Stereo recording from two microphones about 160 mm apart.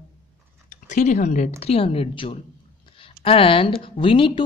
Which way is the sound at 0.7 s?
50° left (ahead or behind).